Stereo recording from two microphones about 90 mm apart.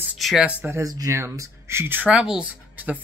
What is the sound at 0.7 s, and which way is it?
Speech, 40° right (ahead or behind).